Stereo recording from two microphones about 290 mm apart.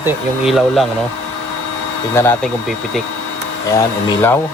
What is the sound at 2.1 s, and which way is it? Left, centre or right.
Speech, centre.